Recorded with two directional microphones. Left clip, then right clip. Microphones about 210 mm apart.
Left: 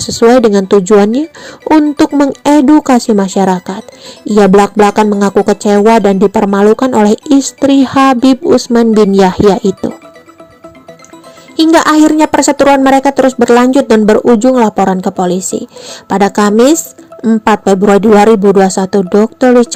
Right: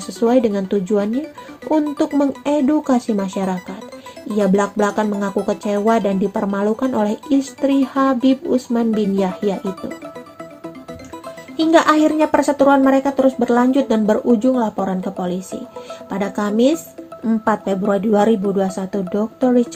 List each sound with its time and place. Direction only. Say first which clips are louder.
0.1 s speech: left 10 dB; 45° left (ahead or behind)
11.5 s speech: left 7 dB; 50° left (ahead or behind)